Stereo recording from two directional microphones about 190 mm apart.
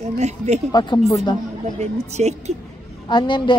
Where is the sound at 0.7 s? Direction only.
25° left (ahead or behind).